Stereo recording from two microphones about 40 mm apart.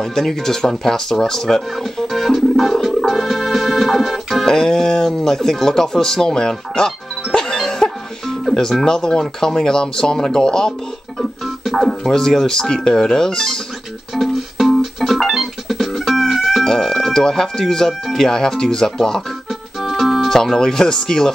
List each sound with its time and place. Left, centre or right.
0.0 s music: centre
4.5 s speech: centre
7.3 s music: centre
8.8 s speech: centre
11.1 s music: centre
12.2 s speech: centre
14.1 s music: centre
16.6 s music: centre
18.0 s speech: centre
19.8 s speech: centre